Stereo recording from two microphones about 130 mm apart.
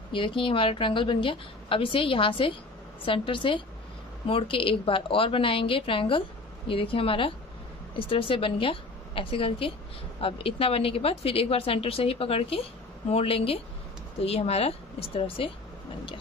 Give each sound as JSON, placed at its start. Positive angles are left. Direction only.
{"t": 0.1, "sound": "a woman's voice", "side_deg": 40}